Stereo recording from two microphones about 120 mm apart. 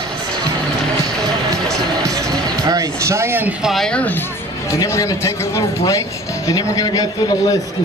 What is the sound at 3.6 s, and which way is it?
Speech, 5° left (ahead or behind).